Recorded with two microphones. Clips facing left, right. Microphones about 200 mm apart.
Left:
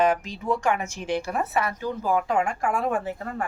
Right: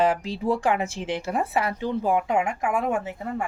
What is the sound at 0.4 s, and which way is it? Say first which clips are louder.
A woman's voice: right 2 dB; 30° right (ahead or behind).